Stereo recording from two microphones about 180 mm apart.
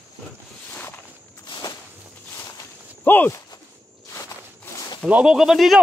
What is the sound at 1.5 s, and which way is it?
Walk, 25° left (ahead or behind).